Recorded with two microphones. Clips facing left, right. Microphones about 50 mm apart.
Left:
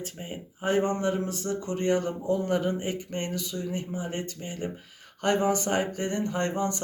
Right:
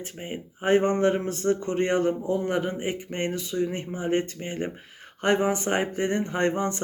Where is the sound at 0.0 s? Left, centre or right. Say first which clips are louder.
Right 2 dB; right.